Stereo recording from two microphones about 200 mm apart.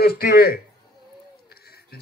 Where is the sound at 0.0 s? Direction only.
50° left (ahead or behind).